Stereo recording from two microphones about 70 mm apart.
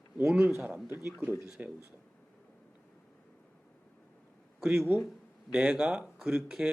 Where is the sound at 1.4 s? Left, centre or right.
Centre.